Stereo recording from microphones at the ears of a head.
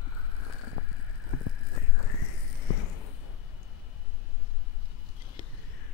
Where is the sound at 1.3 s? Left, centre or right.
Left.